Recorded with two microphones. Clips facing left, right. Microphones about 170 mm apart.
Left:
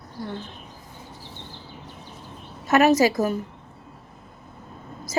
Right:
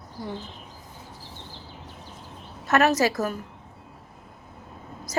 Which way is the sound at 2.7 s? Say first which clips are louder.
Left 4 dB; 10° left (ahead or behind).